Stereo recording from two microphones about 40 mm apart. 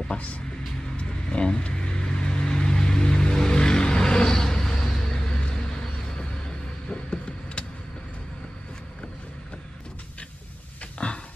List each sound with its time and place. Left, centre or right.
0.1 s speech: left
0.9 s vehicle: left
11.0 s a sound: left